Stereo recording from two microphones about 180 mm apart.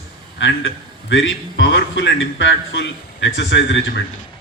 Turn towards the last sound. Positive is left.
turn(degrees=80)